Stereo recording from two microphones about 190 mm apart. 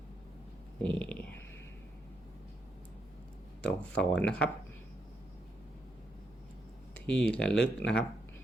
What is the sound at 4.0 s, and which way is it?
Speech, 5° left (ahead or behind).